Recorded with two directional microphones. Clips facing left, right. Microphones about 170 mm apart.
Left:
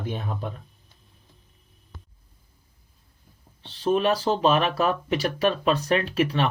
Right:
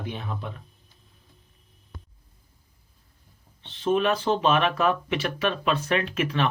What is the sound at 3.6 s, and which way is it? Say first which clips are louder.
Speech: left 1 dB; 35° left (ahead or behind).